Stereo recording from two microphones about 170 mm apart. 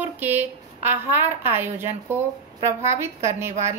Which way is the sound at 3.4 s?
15° right (ahead or behind).